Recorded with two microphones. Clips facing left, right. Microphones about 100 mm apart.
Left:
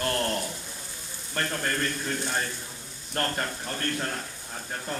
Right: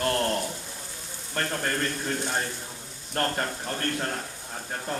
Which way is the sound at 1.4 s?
15° right (ahead or behind).